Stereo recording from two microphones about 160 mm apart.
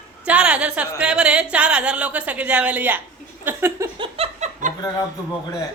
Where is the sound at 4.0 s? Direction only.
40° right (ahead or behind).